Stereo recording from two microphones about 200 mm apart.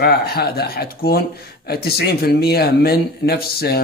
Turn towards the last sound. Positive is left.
turn(degrees=50)  # may be behind; listen again after turning